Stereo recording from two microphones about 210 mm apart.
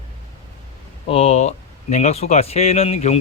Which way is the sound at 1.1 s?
30° left (ahead or behind).